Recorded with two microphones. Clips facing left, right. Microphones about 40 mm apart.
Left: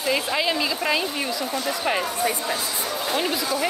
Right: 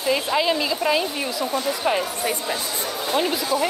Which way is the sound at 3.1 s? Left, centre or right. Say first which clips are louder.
Right 3 dB; centre.